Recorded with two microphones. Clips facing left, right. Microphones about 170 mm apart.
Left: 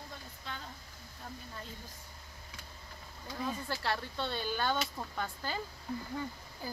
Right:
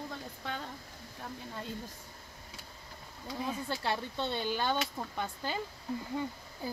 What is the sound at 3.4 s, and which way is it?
A woman's voice, 15° right (ahead or behind).